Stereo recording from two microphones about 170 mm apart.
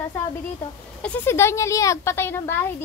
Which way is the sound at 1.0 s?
10° left (ahead or behind).